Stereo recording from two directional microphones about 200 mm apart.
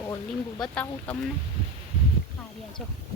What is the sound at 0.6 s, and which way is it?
Speech, 5° left (ahead or behind).